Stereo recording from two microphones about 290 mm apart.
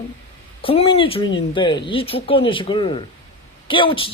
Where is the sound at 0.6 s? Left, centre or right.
Centre.